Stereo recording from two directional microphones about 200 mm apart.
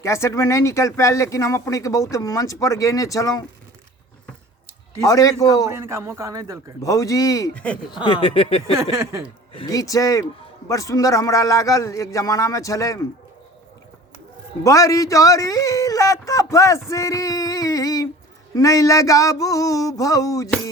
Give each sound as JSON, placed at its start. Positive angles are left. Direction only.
{"t": 0.0, "sound": "speech", "side_deg": 15}
{"t": 4.9, "sound": "speech", "side_deg": 15}
{"t": 5.7, "sound": "speech", "side_deg": -15}
{"t": 6.8, "sound": "speech", "side_deg": 15}
{"t": 7.5, "sound": "speech", "side_deg": 5}
{"t": 8.0, "sound": "speech", "side_deg": 25}
{"t": 8.8, "sound": "speech", "side_deg": -15}
{"t": 9.6, "sound": "speech", "side_deg": 15}
{"t": 14.6, "sound": "speech", "side_deg": 15}
{"t": 16.9, "sound": "female singing", "side_deg": 15}
{"t": 18.5, "sound": "speech", "side_deg": 15}